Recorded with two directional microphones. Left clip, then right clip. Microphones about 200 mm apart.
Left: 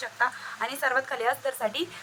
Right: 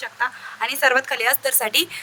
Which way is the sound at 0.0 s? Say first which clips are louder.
Right 3 dB; 50° right (ahead or behind).